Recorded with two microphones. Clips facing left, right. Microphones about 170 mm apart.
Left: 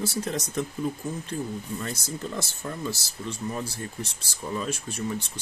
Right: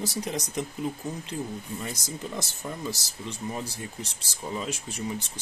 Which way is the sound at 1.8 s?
15° right (ahead or behind).